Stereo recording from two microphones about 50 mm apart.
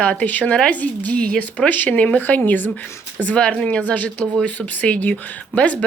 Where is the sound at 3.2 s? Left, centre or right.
Left.